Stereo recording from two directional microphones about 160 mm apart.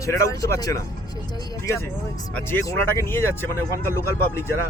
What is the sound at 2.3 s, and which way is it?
Speech, 15° left (ahead or behind).